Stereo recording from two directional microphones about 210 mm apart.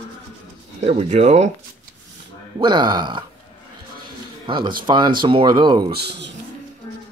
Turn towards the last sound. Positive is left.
turn(degrees=-50)  # may be behind; listen again after turning